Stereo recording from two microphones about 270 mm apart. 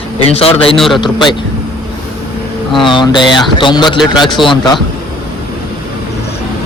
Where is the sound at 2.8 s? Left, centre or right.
Centre.